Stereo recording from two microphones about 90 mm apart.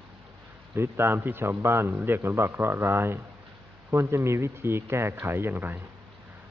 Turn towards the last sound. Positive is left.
turn(degrees=-20)  # may be behind; listen again after turning